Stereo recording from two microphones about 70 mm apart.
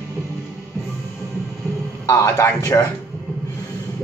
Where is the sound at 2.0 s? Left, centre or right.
Left.